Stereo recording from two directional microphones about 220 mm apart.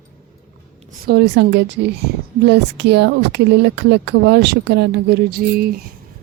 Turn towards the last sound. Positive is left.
turn(degrees=-40)  # may be behind; listen again after turning